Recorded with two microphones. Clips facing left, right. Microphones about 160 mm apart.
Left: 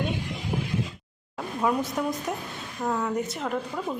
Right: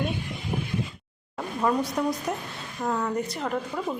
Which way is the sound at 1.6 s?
5° left (ahead or behind).